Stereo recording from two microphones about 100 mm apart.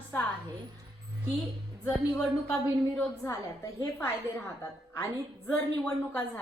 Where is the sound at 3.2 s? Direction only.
30° left (ahead or behind).